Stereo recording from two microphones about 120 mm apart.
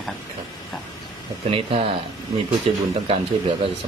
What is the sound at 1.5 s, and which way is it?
Speech, 50° right (ahead or behind).